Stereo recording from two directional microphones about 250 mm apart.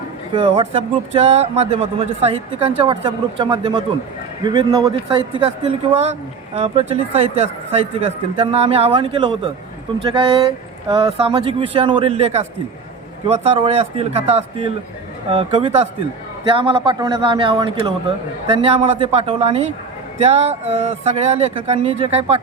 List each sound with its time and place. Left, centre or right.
0.3 s speech: right